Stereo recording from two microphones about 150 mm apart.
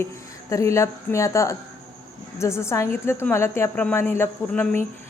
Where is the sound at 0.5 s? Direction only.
20° left (ahead or behind).